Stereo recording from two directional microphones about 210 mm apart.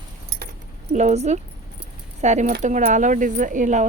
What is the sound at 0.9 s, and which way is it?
Speech, 30° right (ahead or behind).